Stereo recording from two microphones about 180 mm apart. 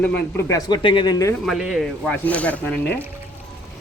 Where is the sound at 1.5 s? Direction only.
Centre (ahead or behind).